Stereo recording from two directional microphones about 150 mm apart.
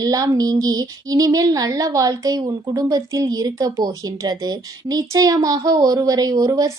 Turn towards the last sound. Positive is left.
turn(degrees=-25)  # may be behind; listen again after turning